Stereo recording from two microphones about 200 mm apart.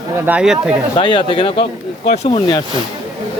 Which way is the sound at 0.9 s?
25° left (ahead or behind).